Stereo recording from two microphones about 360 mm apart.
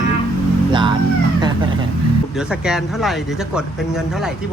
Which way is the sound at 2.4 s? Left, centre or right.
Centre.